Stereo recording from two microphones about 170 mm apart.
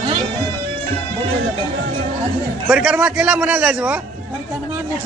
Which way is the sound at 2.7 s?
5° right (ahead or behind).